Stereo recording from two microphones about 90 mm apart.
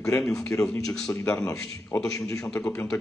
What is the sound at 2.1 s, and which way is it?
Speech, 40° left (ahead or behind).